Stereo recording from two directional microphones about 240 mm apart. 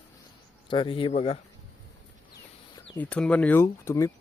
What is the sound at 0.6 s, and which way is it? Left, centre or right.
Speech, left.